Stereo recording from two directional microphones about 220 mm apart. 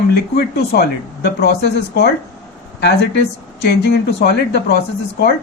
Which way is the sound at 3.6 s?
50° left (ahead or behind).